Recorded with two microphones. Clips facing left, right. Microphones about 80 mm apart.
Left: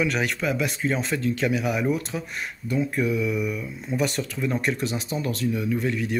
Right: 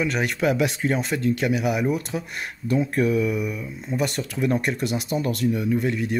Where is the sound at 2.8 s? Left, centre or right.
Right.